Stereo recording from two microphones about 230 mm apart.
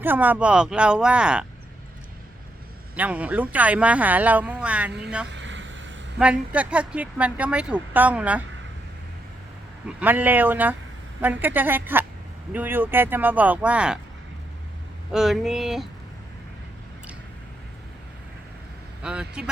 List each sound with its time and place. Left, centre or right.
0.0 s speech: centre
2.9 s speech: centre
5.3 s vehicle: right
6.1 s speech: centre
10.0 s speech: centre
15.1 s speech: centre
19.0 s speech: centre